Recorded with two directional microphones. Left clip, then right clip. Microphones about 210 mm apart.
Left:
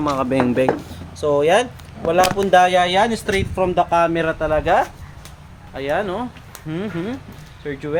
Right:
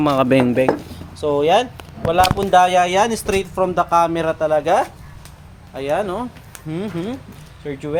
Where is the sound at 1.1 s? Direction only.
10° left (ahead or behind).